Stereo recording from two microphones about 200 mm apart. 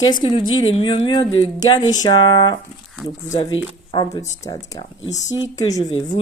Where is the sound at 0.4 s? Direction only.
90° left.